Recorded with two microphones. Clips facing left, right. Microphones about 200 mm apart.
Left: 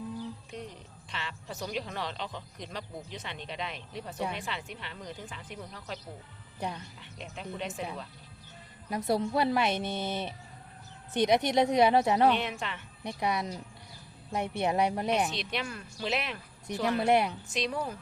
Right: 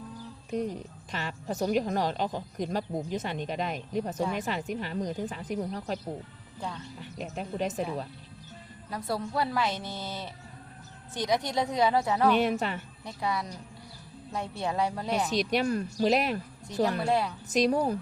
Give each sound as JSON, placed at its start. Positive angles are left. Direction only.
{"t": 0.5, "sound": "speech", "side_deg": -45}
{"t": 7.0, "sound": "speech", "side_deg": -45}
{"t": 8.9, "sound": "a woman's voice", "side_deg": 25}
{"t": 12.3, "sound": "speech", "side_deg": -40}
{"t": 13.1, "sound": "a woman's voice", "side_deg": 20}
{"t": 15.3, "sound": "speech", "side_deg": -40}
{"t": 17.0, "sound": "a woman's voice", "side_deg": 20}
{"t": 17.5, "sound": "speech", "side_deg": -40}